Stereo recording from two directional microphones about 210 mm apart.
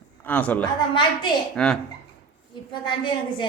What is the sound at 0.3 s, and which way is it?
A woman's voice, 5° left (ahead or behind).